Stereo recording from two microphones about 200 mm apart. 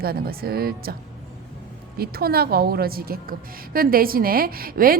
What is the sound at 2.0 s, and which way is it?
A woman's voice, 50° right (ahead or behind).